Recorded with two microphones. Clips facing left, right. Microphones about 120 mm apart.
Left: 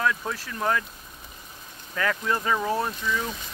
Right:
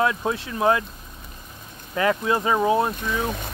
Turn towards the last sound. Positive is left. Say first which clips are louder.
# right 5 dB
turn(degrees=-55)  # may be behind; listen again after turning